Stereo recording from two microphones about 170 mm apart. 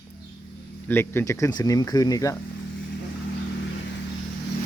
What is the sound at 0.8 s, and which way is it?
Speech, 15° left (ahead or behind).